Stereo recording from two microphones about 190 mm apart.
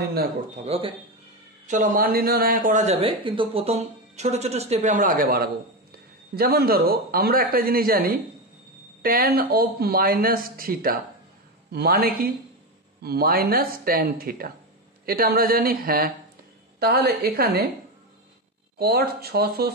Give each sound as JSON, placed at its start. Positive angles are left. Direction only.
{"t": 0.0, "sound": "speech", "side_deg": -55}
{"t": 0.6, "sound": "speech", "side_deg": -30}
{"t": 1.7, "sound": "speech", "side_deg": -45}
{"t": 18.8, "sound": "speech", "side_deg": -55}